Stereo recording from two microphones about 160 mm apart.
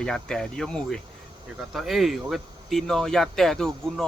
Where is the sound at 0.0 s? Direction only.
5° left (ahead or behind).